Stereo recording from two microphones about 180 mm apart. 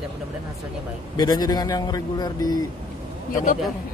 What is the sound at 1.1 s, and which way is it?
Speech, 20° left (ahead or behind).